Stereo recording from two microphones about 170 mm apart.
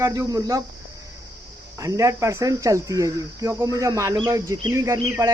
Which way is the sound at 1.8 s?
20° right (ahead or behind).